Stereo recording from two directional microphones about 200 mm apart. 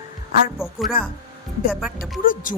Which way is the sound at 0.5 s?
5° right (ahead or behind).